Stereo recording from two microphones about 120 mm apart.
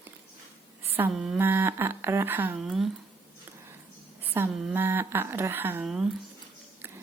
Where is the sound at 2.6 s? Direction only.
Centre (ahead or behind).